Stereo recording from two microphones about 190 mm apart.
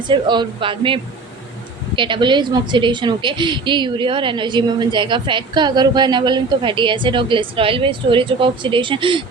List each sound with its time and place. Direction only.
0.1 s a woman's voice: 25° right (ahead or behind)
2.0 s a woman's voice: 25° right (ahead or behind)